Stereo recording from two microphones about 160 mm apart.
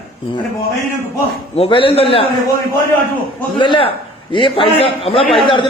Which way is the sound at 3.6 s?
30° left (ahead or behind).